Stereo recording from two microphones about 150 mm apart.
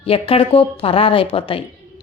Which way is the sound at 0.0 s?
40° left (ahead or behind).